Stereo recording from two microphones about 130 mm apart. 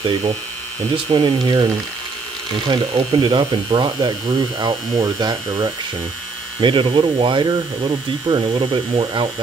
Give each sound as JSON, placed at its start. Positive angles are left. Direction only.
{"t": 0.0, "sound": "speech", "side_deg": -40}
{"t": 2.7, "sound": "speech", "side_deg": -40}